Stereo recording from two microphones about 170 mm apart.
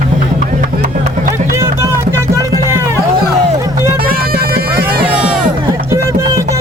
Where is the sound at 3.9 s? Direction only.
60° right (ahead or behind).